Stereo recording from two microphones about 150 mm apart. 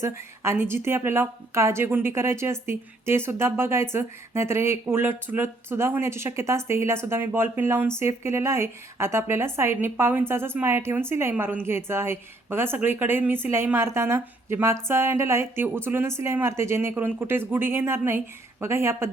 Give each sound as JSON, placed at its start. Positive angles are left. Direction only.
{"t": 0.0, "sound": "speech", "side_deg": -15}